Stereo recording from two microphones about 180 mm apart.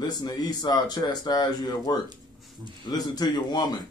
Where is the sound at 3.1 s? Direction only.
25° left (ahead or behind).